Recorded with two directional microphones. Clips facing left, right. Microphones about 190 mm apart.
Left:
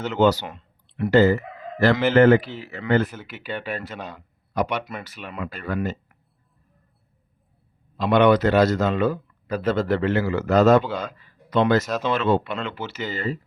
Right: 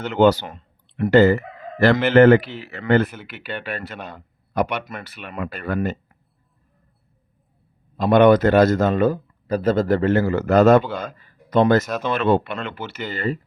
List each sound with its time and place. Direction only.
0.0 s speech: 60° right (ahead or behind)
7.9 s a man's voice: 50° right (ahead or behind)